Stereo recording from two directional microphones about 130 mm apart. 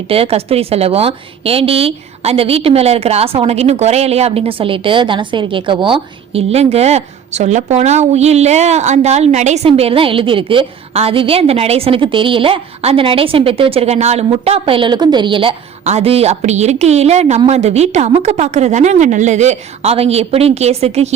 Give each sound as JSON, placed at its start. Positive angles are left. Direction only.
{"t": 0.1, "sound": "a woman's voice", "side_deg": -50}